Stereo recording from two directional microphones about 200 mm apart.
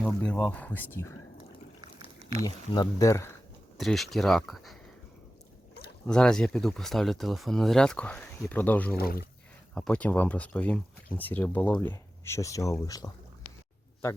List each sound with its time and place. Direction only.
0.0 s speech: 5° left (ahead or behind)
1.8 s a sound: 25° right (ahead or behind)
2.4 s speech: 15° left (ahead or behind)
3.8 s speech: centre (ahead or behind)
6.1 s speech: 5° left (ahead or behind)
9.0 s speech: 50° left (ahead or behind)
9.7 s speech: 5° left (ahead or behind)